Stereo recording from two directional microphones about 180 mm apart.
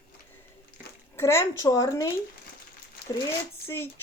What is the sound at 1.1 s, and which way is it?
Speech, 15° left (ahead or behind).